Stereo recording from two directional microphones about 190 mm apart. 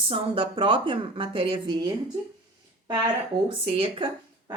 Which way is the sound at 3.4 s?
30° right (ahead or behind).